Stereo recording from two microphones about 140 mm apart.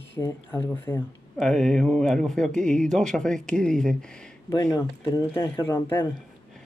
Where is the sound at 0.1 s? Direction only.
20° left (ahead or behind).